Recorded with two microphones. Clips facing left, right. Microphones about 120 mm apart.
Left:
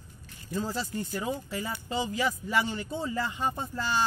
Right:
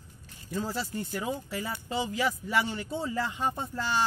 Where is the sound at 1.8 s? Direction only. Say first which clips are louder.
Even; 10° right (ahead or behind).